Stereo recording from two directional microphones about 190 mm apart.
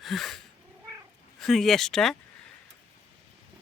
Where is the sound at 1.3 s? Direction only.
Centre (ahead or behind).